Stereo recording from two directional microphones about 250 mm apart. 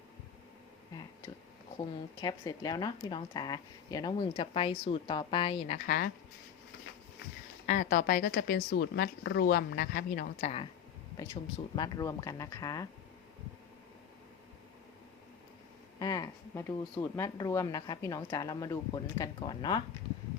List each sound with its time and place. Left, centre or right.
2.2 s speech: centre; by 6.1 s left
7.7 s speech: left
11.8 s speech: centre
16.0 s speech: centre